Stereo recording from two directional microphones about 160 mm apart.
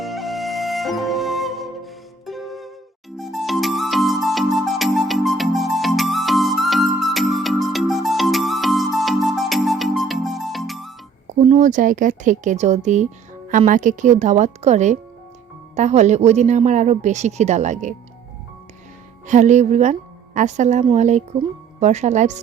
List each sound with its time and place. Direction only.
0.0 s music: centre (ahead or behind)
11.3 s speech: 50° right (ahead or behind)
19.3 s a woman's voice: 50° right (ahead or behind)